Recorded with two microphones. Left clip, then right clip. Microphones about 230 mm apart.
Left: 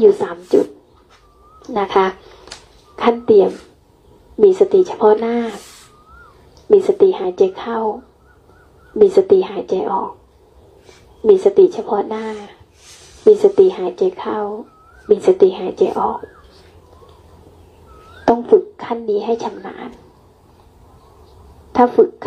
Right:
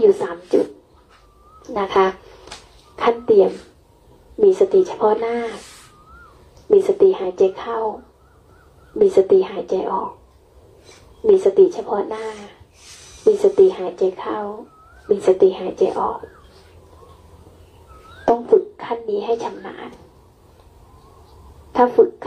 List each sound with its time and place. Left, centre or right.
0.0 s speech: left
1.7 s a woman's voice: left
4.6 s speech: left
6.8 s speech: left
8.9 s speech: left
11.4 s speech: left
18.2 s speech: left
21.7 s speech: left